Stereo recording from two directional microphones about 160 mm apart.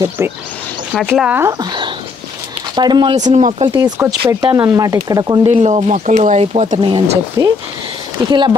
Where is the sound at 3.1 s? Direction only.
50° right (ahead or behind).